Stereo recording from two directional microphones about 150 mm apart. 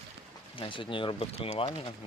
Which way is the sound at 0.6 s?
35° left (ahead or behind).